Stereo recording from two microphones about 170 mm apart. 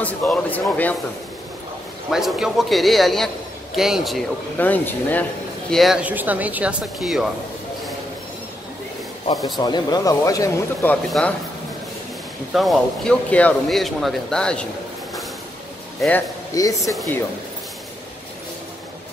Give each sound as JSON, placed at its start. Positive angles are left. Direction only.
{"t": 0.0, "sound": "speech", "side_deg": 10}
{"t": 2.0, "sound": "speech", "side_deg": 0}
{"t": 4.6, "sound": "speech", "side_deg": 10}
{"t": 5.7, "sound": "speech", "side_deg": 0}
{"t": 9.3, "sound": "speech", "side_deg": 25}
{"t": 11.1, "sound": "speech", "side_deg": 5}
{"t": 12.5, "sound": "speech", "side_deg": 0}
{"t": 16.5, "sound": "speech", "side_deg": 20}